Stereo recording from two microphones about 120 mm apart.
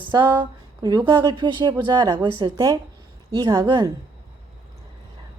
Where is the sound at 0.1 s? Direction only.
35° right (ahead or behind).